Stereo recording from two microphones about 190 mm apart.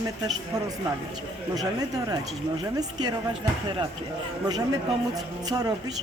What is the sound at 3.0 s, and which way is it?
Speech, 20° right (ahead or behind).